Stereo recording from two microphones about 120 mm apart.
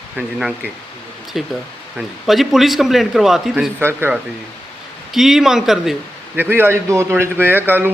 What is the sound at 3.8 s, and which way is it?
Speech, 20° right (ahead or behind).